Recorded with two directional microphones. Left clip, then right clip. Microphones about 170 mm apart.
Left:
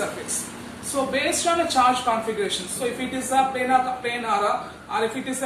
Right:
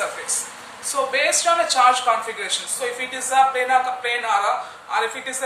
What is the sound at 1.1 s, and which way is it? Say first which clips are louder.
A man's voice: right 4 dB; 20° right (ahead or behind).